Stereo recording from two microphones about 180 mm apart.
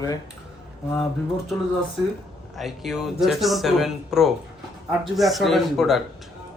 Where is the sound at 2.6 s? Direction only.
Centre (ahead or behind).